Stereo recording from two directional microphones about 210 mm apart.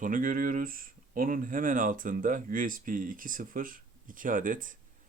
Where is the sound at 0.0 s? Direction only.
40° right (ahead or behind).